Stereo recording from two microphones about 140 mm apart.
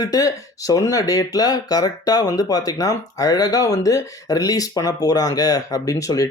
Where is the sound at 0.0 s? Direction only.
25° left (ahead or behind).